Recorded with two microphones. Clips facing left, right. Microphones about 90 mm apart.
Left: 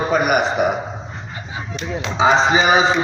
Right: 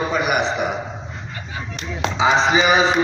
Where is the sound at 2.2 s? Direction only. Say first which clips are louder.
Left 2 dB; 40° left (ahead or behind).